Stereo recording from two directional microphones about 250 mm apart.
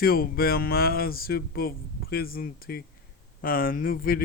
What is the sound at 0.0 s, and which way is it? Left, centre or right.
Speech, left.